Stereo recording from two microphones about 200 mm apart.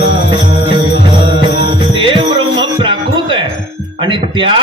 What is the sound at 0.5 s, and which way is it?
Music, 25° right (ahead or behind).